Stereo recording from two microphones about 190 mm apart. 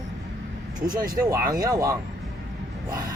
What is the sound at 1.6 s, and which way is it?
Speech, 20° right (ahead or behind).